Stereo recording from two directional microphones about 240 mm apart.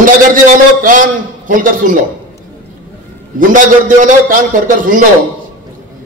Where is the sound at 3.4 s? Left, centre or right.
Right.